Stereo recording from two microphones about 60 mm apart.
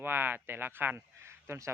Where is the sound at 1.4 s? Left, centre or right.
Right.